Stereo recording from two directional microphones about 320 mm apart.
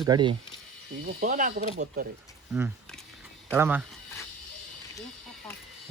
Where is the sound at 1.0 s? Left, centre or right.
Right.